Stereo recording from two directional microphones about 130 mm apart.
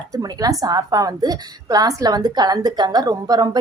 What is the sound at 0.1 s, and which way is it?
A woman's voice, 30° right (ahead or behind).